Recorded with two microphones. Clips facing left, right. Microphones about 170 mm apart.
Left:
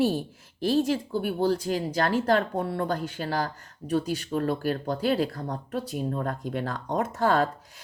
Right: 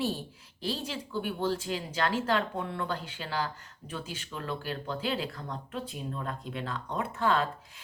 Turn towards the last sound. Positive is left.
turn(degrees=45)  # may be behind; listen again after turning